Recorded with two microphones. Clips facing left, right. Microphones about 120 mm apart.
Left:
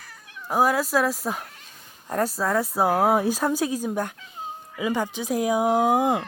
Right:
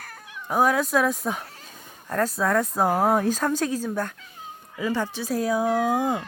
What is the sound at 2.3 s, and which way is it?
Speech, 5° left (ahead or behind).